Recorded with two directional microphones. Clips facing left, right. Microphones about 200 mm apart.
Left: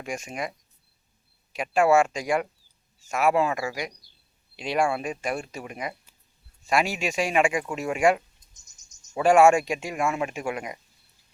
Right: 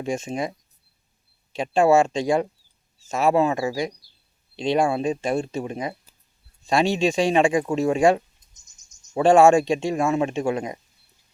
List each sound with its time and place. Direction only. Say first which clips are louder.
0.0 s speech: right 6 dB; 25° right (ahead or behind)
1.5 s speech: right 3 dB; 25° right (ahead or behind)